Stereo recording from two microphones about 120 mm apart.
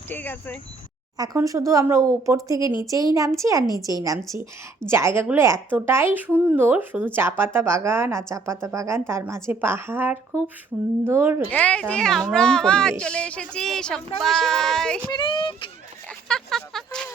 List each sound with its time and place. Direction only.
0.1 s speech: 15° left (ahead or behind)
1.1 s speech: 30° right (ahead or behind)
11.4 s speech: 10° left (ahead or behind)
15.1 s speech: 40° left (ahead or behind)
16.3 s a sound: 5° left (ahead or behind)